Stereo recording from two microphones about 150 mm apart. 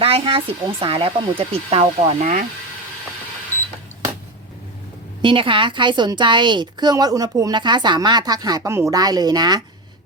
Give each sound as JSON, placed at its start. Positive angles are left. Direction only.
{"t": 0.0, "sound": "speech", "side_deg": -40}
{"t": 2.2, "sound": "speech", "side_deg": -65}
{"t": 5.2, "sound": "a woman's voice", "side_deg": -35}